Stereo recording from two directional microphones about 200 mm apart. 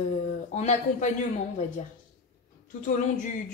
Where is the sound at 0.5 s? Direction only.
35° left (ahead or behind).